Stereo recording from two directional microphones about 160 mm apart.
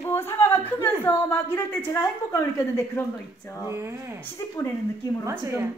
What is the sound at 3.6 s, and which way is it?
Speech, 15° right (ahead or behind).